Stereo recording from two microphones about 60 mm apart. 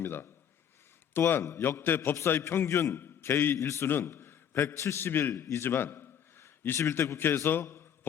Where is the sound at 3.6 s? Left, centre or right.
Left.